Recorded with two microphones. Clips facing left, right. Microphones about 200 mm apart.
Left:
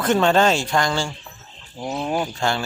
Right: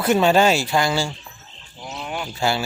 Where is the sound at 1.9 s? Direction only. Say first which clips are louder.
Left 7 dB; 35° left (ahead or behind).